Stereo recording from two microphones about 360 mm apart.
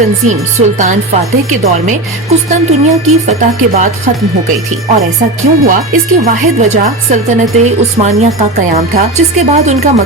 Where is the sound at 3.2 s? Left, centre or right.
Centre.